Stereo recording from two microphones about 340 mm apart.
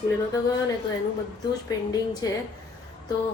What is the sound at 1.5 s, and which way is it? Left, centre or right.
Speech, centre.